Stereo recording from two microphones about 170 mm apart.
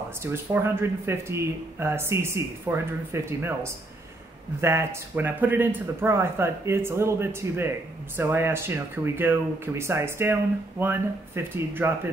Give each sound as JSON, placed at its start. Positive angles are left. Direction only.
{"t": 0.2, "sound": "speech", "side_deg": -15}